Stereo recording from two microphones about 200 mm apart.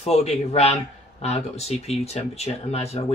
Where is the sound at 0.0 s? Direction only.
30° left (ahead or behind).